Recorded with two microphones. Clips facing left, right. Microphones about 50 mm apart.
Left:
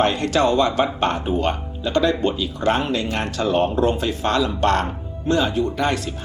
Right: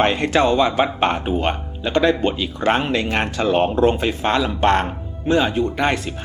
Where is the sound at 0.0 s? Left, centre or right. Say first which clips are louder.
Right 1 dB; right.